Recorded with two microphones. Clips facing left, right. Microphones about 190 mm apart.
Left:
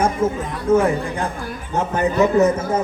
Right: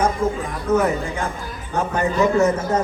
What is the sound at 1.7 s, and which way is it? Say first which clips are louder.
A man's voice: left 2 dB; 20° left (ahead or behind).